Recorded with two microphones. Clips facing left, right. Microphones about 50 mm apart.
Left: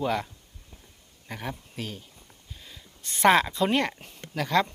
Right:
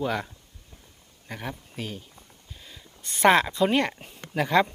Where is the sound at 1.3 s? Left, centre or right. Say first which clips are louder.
Even; centre.